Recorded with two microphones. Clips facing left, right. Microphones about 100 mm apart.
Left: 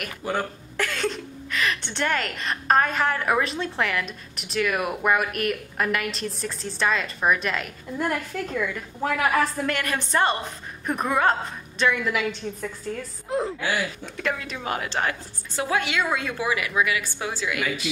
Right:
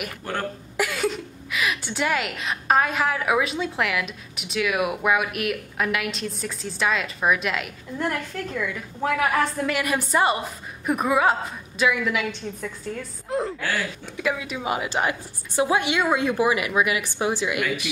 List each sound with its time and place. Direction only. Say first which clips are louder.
0.2 s speech: left 3 dB; 5° left (ahead or behind)
0.7 s a woman's voice: right 2 dB; 10° right (ahead or behind)